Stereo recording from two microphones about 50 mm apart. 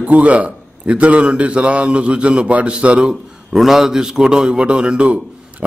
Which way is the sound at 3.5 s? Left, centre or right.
Centre.